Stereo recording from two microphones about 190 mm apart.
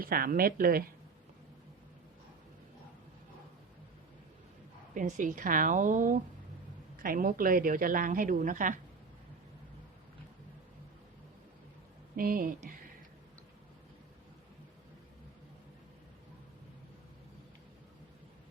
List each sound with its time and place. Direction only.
0.0 s a woman's voice: 50° right (ahead or behind)
4.9 s a woman's voice: 45° right (ahead or behind)
12.1 s a woman's voice: 50° right (ahead or behind)